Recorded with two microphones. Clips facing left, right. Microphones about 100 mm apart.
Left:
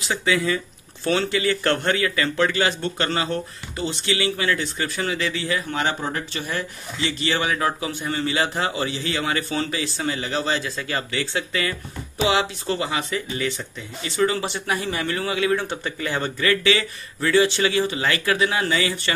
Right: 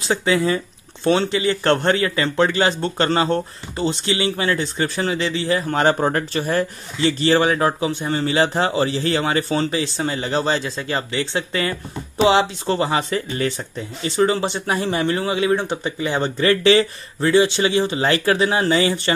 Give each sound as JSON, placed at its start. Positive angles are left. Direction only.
{"t": 0.1, "sound": "a man's voice", "side_deg": -30}